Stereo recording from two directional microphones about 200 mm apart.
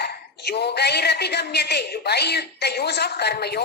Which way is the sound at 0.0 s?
55° left (ahead or behind).